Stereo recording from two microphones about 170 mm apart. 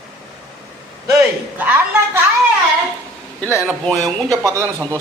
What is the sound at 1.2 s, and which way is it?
A man's voice, 10° right (ahead or behind).